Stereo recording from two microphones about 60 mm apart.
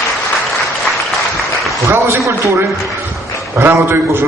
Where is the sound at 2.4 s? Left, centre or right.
Right.